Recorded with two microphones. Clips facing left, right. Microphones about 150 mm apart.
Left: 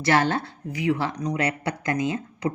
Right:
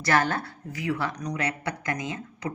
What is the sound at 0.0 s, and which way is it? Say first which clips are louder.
Speech: left 3 dB; 25° left (ahead or behind).